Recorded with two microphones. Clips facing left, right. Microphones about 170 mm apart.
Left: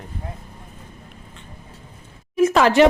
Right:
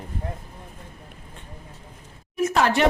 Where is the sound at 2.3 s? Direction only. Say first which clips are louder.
Left 6 dB; 90° left.